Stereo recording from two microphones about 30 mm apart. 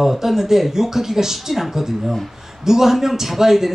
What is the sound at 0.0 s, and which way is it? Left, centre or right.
Speech, centre.